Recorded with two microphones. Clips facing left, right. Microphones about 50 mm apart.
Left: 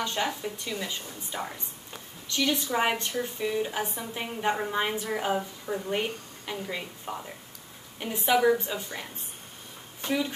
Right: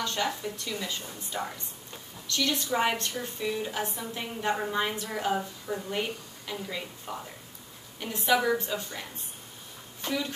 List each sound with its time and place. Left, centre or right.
0.0 s a woman's voice: centre
1.3 s speech: centre
2.2 s a woman's voice: centre
10.0 s a woman's voice: centre